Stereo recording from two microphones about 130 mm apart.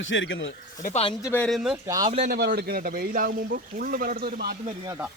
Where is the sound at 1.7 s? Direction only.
25° right (ahead or behind).